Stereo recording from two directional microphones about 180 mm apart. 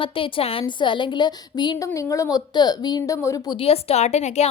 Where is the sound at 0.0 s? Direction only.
30° left (ahead or behind).